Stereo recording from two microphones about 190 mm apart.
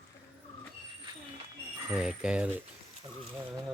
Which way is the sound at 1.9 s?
5° right (ahead or behind).